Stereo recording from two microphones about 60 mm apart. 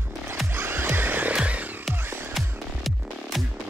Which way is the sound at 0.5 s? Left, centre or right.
Right.